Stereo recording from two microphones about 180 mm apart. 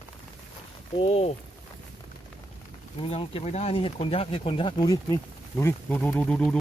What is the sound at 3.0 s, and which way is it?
Speech, 30° left (ahead or behind).